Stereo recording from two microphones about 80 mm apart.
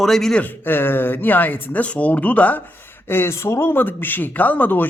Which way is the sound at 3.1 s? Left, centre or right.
Left.